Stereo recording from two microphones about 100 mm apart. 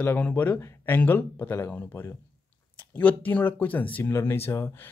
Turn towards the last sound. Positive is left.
turn(degrees=25)  # may be behind; listen again after turning